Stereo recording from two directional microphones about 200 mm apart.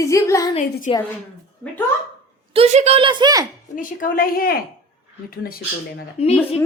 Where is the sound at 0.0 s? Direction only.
15° left (ahead or behind).